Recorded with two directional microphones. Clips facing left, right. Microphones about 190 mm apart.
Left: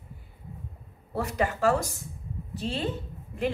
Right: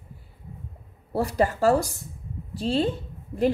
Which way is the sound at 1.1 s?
35° right (ahead or behind).